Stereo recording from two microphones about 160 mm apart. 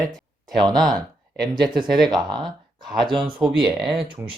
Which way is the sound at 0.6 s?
25° right (ahead or behind).